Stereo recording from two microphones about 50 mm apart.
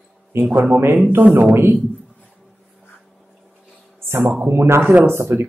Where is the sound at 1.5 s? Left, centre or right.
Right.